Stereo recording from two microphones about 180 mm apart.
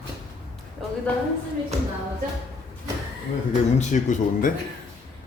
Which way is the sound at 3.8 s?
45° left (ahead or behind).